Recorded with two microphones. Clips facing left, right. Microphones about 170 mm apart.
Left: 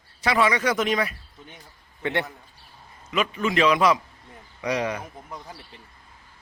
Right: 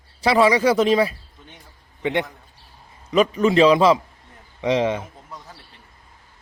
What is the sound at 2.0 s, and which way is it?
Speech, 15° right (ahead or behind).